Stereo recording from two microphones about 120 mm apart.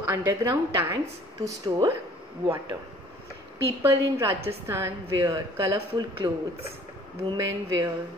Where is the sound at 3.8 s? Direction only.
20° right (ahead or behind).